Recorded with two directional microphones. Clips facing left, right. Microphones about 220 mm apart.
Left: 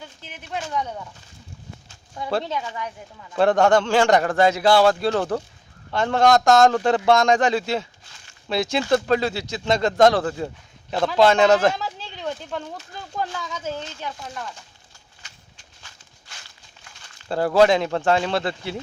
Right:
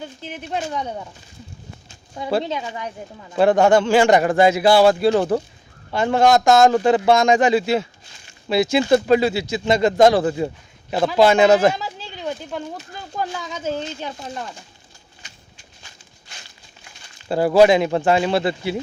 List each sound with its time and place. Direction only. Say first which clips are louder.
0.0 s speech: right 9 dB; 25° right (ahead or behind)
1.9 s a sound: right 3 dB; 20° right (ahead or behind)
2.4 s speech: right 2 dB; 20° right (ahead or behind)
3.3 s speech: right 3 dB; 5° right (ahead or behind); by 14.5 s 25° right (ahead or behind)
15.2 s walk: right 2 dB; 15° right (ahead or behind)